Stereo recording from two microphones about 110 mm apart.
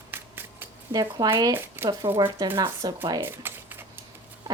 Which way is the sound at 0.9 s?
35° right (ahead or behind).